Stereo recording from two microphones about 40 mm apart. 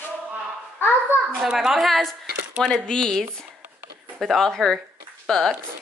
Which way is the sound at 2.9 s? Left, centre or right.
Centre.